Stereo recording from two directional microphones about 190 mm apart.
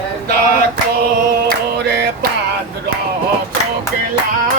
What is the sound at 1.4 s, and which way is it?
Mantra, 60° right (ahead or behind).